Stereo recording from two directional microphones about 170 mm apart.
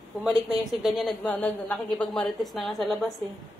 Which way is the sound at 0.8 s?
Centre (ahead or behind).